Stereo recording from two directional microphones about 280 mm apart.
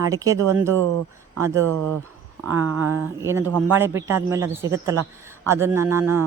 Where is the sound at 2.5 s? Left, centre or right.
Right.